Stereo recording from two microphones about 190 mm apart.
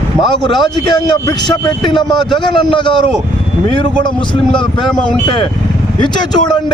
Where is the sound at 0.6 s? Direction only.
20° left (ahead or behind).